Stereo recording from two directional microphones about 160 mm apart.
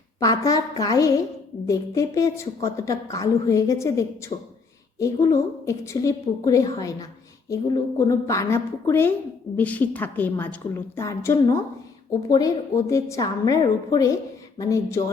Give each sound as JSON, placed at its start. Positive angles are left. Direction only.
{"t": 0.2, "sound": "a woman's voice", "side_deg": 20}